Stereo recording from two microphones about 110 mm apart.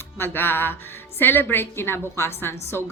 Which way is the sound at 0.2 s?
20° left (ahead or behind).